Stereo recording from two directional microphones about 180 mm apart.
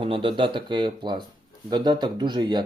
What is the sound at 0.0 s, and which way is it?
Speech, 30° right (ahead or behind).